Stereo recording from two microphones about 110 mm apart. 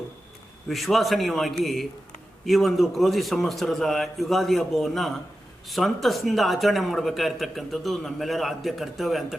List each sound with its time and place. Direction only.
0.7 s speech: centre (ahead or behind)